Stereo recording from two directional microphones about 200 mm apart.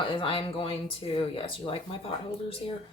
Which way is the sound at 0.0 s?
25° left (ahead or behind).